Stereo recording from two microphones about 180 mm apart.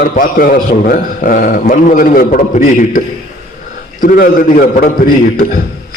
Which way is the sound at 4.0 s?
50° left (ahead or behind).